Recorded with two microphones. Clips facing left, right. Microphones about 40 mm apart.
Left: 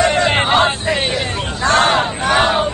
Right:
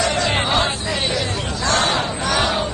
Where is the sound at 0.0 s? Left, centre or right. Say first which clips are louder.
Left 5 dB; left.